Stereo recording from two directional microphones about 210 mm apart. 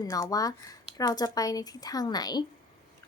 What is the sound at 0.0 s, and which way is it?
Speech, 15° left (ahead or behind).